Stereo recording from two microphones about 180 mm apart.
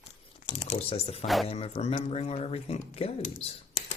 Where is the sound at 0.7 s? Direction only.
35° left (ahead or behind).